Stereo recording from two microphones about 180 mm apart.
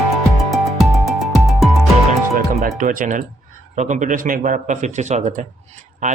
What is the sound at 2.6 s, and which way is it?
Speech, 50° right (ahead or behind).